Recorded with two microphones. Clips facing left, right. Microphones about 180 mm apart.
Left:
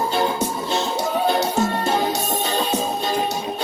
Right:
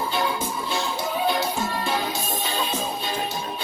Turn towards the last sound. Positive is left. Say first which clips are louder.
# left 6 dB
turn(degrees=45)  # may be behind; listen again after turning